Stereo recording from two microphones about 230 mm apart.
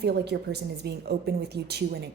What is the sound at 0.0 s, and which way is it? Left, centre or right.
Speech, right.